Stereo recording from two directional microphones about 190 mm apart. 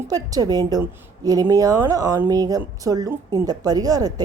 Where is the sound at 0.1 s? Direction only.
20° right (ahead or behind).